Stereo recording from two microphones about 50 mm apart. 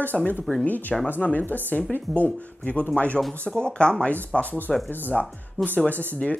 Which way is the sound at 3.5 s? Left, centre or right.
Centre.